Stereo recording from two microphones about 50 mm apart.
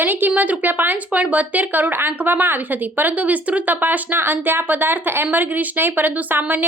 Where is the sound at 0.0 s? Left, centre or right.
Right.